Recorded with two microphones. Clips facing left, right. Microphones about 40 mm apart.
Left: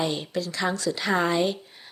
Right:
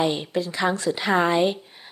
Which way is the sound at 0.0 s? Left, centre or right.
Right.